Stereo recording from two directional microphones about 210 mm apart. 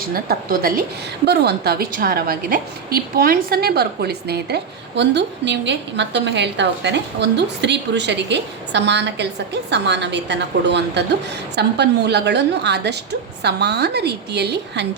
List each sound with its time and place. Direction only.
0.1 s a woman's voice: 45° right (ahead or behind)